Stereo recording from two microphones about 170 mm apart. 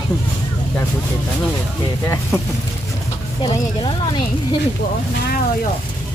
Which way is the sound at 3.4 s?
25° left (ahead or behind).